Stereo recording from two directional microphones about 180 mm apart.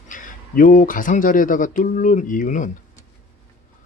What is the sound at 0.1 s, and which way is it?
Speech, 45° left (ahead or behind).